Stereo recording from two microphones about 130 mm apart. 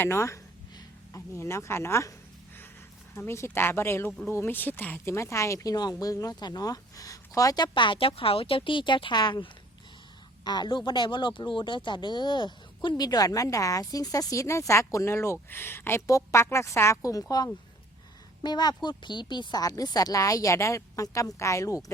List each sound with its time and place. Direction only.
0.0 s speech: 20° left (ahead or behind)
3.2 s speech: 20° left (ahead or behind)